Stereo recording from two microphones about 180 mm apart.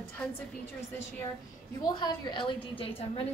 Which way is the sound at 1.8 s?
25° left (ahead or behind).